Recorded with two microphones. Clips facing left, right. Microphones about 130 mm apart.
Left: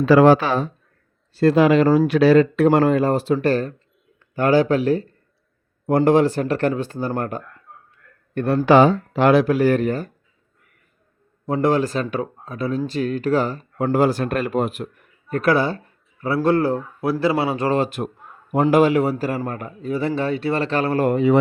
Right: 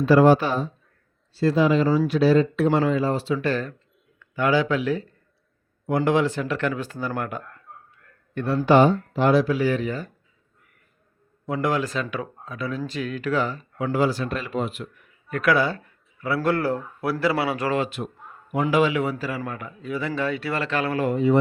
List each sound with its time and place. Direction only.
0.0 s speech: 90° left
1.4 s speech: 60° left (ahead or behind)
2.6 s speech: 55° left (ahead or behind); by 7.4 s 35° left (ahead or behind)
7.7 s a sound: centre (ahead or behind)
8.4 s speech: 45° left (ahead or behind)
8.6 s speech: 90° left; by 10.1 s 50° left (ahead or behind)
11.4 s speech: 30° left (ahead or behind)
15.4 s speech: 30° left (ahead or behind)
17.8 s speech: 45° left (ahead or behind)
21.1 s speech: 75° left (ahead or behind)